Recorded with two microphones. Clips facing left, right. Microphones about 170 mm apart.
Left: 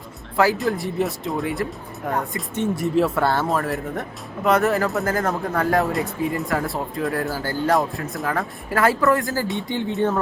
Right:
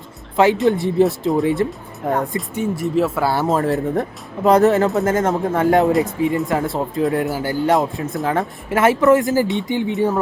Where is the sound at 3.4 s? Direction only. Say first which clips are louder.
Right 5 dB; 25° right (ahead or behind).